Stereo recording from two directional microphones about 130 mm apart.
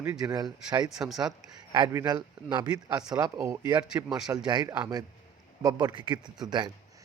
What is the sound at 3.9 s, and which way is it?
Speech, 5° right (ahead or behind).